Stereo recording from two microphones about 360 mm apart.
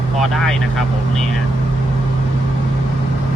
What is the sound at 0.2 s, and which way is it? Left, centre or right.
Speech, centre.